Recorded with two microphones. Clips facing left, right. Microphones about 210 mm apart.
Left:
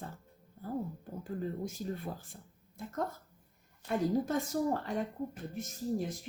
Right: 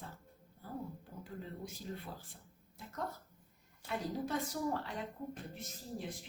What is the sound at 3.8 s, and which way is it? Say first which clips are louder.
Speech: left 8 dB; 45° left (ahead or behind).